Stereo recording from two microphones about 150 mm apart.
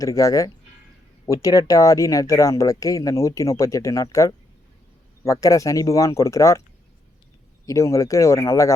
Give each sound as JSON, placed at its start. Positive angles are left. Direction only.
{"t": 0.0, "sound": "speech", "side_deg": 20}
{"t": 7.6, "sound": "speech", "side_deg": 20}